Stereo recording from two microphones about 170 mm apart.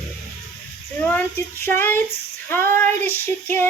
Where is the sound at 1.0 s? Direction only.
10° left (ahead or behind).